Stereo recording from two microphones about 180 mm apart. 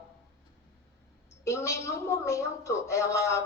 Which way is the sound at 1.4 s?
15° left (ahead or behind).